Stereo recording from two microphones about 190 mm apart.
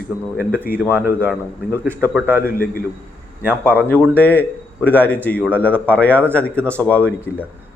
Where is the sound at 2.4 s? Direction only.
50° left (ahead or behind).